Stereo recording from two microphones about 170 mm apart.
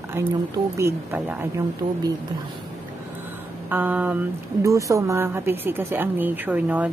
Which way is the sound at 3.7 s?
10° right (ahead or behind).